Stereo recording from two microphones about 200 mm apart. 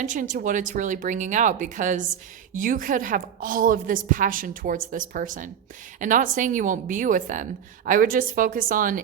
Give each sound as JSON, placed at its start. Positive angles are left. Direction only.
{"t": 0.0, "sound": "a woman's voice", "side_deg": -40}